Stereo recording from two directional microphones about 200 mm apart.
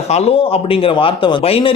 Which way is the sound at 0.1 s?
30° left (ahead or behind).